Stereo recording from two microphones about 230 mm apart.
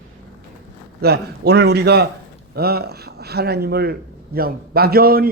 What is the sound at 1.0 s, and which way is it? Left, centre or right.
A man's voice, right.